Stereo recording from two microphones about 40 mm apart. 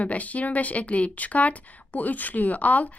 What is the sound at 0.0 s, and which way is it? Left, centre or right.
Speech, left.